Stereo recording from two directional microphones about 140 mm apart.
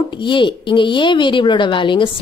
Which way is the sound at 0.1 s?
35° left (ahead or behind).